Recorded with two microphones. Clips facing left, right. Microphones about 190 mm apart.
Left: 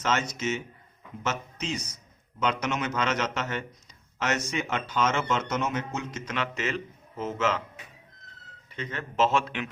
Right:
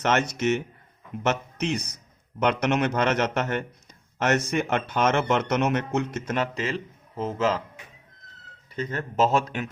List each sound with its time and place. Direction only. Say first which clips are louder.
0.0 s speech: right 5 dB; 60° right (ahead or behind); by 7.6 s 35° right (ahead or behind)
8.7 s speech: right 5 dB; 40° right (ahead or behind)